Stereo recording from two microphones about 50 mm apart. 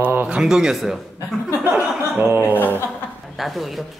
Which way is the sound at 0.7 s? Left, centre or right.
Centre.